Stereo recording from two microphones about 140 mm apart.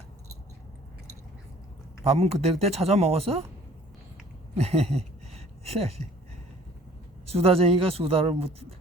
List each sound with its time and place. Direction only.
2.0 s speech: 45° right (ahead or behind)
4.5 s speech: 45° right (ahead or behind)
7.3 s speech: 45° right (ahead or behind)